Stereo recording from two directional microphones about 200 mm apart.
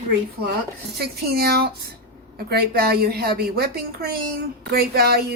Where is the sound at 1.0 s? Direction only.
50° right (ahead or behind).